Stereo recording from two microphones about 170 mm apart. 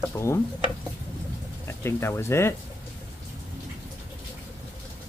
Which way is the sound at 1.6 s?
15° left (ahead or behind).